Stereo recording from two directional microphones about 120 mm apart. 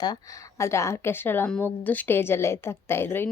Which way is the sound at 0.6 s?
25° left (ahead or behind).